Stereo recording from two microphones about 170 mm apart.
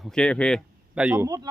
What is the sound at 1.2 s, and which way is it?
Speech, 20° right (ahead or behind).